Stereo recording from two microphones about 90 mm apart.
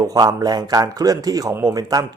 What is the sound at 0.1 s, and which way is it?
Speech, 45° right (ahead or behind).